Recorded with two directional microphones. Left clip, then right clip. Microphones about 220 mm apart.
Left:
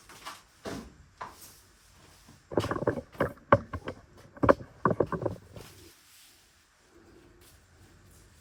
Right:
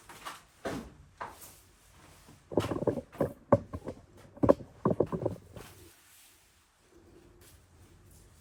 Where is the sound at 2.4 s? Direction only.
30° right (ahead or behind).